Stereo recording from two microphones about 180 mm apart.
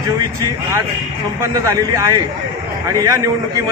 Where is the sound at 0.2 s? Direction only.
20° right (ahead or behind).